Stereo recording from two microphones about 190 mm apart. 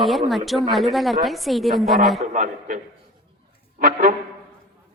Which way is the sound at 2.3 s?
40° right (ahead or behind).